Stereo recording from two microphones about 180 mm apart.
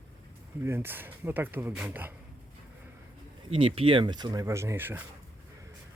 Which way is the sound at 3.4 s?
30° right (ahead or behind).